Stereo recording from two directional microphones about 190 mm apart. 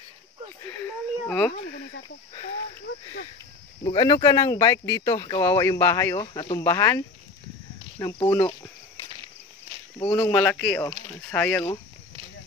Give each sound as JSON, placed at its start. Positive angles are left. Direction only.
{"t": 0.7, "sound": "speech", "side_deg": 10}
{"t": 3.8, "sound": "speech", "side_deg": 25}